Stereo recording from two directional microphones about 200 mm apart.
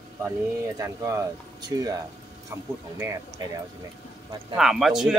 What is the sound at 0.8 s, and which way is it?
Speech, 15° right (ahead or behind).